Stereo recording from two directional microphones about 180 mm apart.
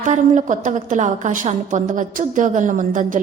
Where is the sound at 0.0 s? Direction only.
45° right (ahead or behind).